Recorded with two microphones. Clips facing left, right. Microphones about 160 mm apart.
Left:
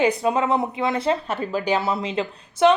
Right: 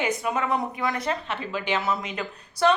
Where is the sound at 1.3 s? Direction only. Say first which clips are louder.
Left 5 dB; 40° left (ahead or behind); by 2.7 s 25° left (ahead or behind).